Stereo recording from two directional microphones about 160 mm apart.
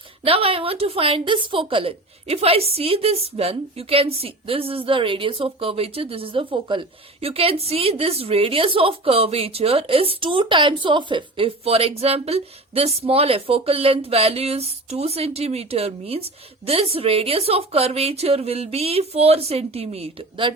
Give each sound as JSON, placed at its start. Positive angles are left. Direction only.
{"t": 0.3, "sound": "a woman's voice", "side_deg": -35}